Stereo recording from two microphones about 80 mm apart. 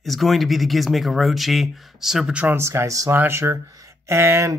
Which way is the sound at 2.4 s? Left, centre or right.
Right.